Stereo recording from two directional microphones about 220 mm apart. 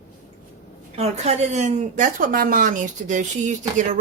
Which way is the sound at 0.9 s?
30° right (ahead or behind).